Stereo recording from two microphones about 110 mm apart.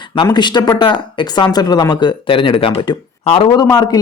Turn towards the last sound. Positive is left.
turn(degrees=35)  # may be behind; listen again after turning